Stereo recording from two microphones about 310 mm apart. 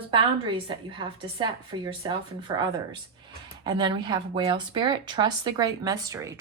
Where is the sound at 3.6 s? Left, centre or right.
Centre.